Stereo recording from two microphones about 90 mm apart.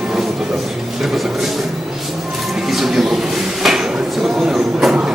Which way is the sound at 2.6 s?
5° right (ahead or behind).